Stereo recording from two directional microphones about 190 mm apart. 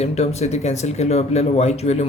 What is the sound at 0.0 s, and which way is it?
Speech, 35° left (ahead or behind).